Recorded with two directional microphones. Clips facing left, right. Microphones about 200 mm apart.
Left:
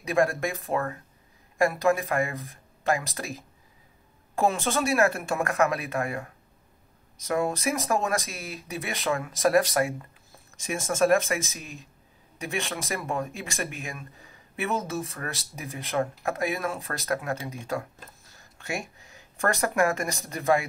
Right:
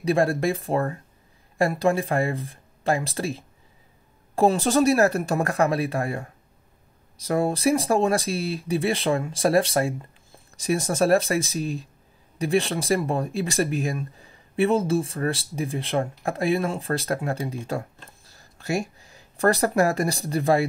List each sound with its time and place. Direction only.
0.0 s speech: 30° right (ahead or behind)